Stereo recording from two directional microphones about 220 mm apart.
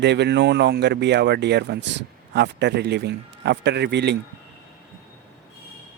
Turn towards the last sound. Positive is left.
turn(degrees=-50)  # may be behind; listen again after turning